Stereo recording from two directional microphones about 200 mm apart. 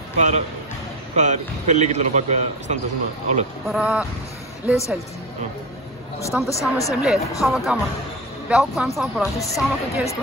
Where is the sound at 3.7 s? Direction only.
5° right (ahead or behind).